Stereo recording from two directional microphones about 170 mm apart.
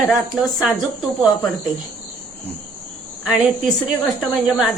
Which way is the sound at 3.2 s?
Centre (ahead or behind).